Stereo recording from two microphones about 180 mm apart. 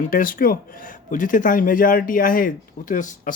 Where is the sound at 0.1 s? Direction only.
50° left (ahead or behind).